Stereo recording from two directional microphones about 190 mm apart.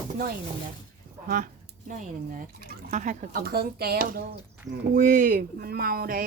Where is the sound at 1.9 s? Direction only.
50° right (ahead or behind).